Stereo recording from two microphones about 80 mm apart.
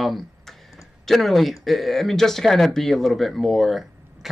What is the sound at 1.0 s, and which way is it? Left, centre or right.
Speech, centre.